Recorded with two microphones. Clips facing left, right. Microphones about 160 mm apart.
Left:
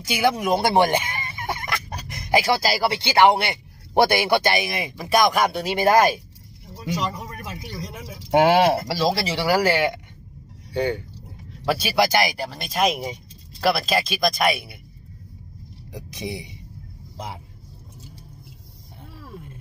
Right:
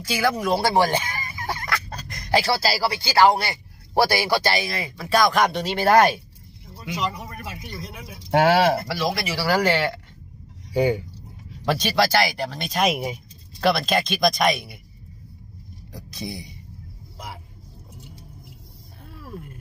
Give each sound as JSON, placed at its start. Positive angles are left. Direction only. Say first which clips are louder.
{"t": 0.1, "sound": "fowl", "louder": "left 1 dB", "side_deg": 20}
{"t": 6.9, "sound": "speech", "louder": "left 4 dB", "side_deg": 40}
{"t": 8.3, "sound": "speech", "louder": "left 1 dB", "side_deg": 20}
{"t": 8.9, "sound": "speech", "louder": "left 3 dB", "side_deg": 30}
{"t": 9.5, "sound": "speech", "louder": "left 1 dB", "side_deg": 10}
{"t": 10.7, "sound": "speech", "louder": "right 3 dB", "side_deg": -10}
{"t": 11.6, "sound": "speech", "louder": "even", "side_deg": 5}
{"t": 12.4, "sound": "speech", "louder": "even", "side_deg": 5}
{"t": 15.9, "sound": "a sound", "louder": "left 2 dB", "side_deg": 20}